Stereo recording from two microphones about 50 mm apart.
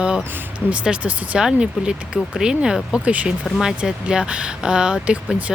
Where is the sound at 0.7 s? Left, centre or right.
Right.